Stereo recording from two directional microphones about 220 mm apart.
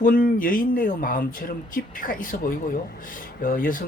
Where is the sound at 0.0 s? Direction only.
40° left (ahead or behind).